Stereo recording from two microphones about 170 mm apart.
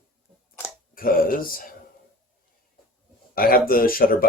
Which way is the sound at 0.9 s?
55° left (ahead or behind).